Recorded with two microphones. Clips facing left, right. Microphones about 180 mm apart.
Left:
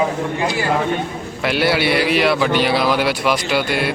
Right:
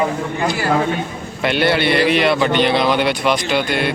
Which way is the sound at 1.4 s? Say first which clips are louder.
Right 1 dB; 5° left (ahead or behind).